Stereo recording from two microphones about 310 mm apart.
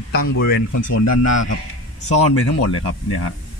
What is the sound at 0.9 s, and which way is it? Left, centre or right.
A man's voice, left.